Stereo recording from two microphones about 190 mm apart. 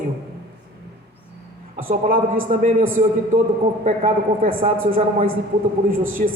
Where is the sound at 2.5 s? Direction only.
45° right (ahead or behind).